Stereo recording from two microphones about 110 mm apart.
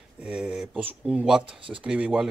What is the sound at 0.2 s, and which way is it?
Speech, 10° right (ahead or behind).